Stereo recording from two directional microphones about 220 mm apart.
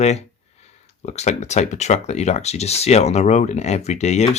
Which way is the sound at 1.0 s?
30° left (ahead or behind).